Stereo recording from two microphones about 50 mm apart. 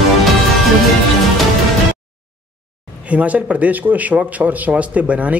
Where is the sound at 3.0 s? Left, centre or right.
Right.